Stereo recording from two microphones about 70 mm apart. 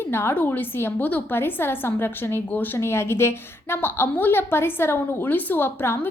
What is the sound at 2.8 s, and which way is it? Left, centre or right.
A woman's voice, left.